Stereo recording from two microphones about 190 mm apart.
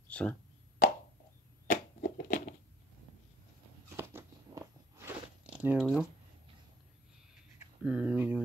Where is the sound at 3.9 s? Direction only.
15° right (ahead or behind).